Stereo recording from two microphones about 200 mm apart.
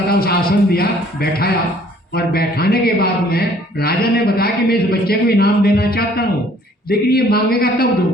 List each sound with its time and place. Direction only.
0.1 s speech: 50° left (ahead or behind)